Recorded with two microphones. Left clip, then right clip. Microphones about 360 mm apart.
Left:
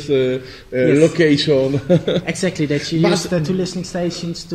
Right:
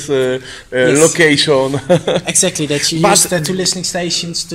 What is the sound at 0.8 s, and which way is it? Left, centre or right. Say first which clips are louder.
A man's voice: right 3 dB; right.